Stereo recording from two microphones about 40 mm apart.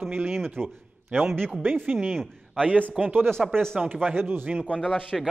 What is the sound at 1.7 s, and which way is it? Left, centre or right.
Speech, right.